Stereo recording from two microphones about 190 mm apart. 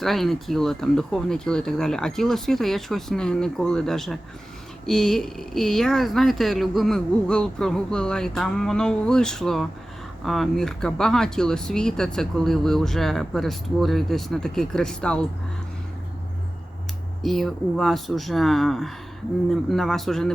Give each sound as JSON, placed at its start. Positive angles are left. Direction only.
{"t": 0.0, "sound": "speech", "side_deg": 0}
{"t": 17.2, "sound": "speech", "side_deg": 0}